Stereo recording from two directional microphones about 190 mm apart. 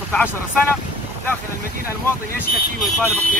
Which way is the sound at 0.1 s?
10° left (ahead or behind).